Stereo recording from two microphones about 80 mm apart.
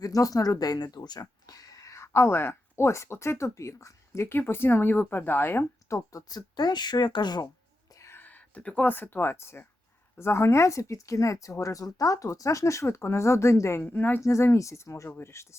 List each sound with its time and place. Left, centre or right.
0.0 s speech: left
6.1 s speech: left
7.9 s whispering: left
8.2 s a sound: left
8.9 s speech: left
13.8 s speech: left
14.2 s speech: left